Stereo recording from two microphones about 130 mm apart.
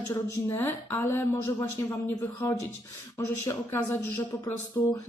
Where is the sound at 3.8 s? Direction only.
10° left (ahead or behind).